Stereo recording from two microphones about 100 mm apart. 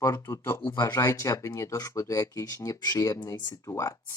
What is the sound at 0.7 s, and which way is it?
Speech, 35° left (ahead or behind).